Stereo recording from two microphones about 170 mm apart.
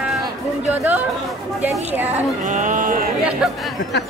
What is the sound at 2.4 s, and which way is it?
Speech, 50° right (ahead or behind).